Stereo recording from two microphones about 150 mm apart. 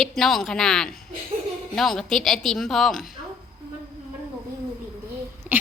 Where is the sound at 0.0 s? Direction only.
Centre (ahead or behind).